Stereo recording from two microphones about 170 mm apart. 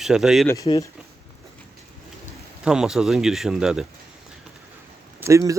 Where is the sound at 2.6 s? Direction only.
5° right (ahead or behind).